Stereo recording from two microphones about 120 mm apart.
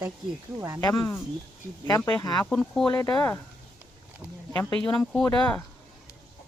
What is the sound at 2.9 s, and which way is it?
Speech, 30° left (ahead or behind).